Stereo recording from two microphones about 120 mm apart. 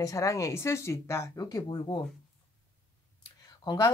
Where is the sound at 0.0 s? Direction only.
30° left (ahead or behind).